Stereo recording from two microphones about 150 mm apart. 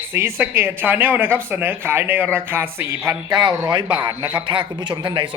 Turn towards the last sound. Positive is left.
turn(degrees=-30)  # may be behind; listen again after turning